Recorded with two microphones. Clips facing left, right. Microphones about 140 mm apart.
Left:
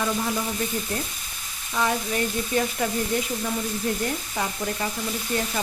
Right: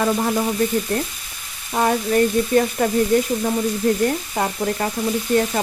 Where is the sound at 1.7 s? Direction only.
45° right (ahead or behind).